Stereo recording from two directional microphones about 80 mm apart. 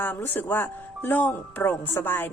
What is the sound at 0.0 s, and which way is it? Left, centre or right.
Speech, left.